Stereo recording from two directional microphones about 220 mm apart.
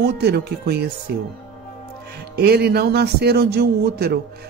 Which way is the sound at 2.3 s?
45° right (ahead or behind).